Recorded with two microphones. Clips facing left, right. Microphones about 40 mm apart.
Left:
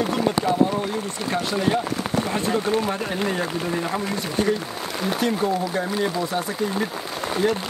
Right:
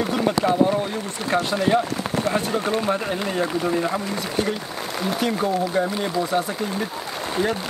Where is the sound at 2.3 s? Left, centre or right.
Centre.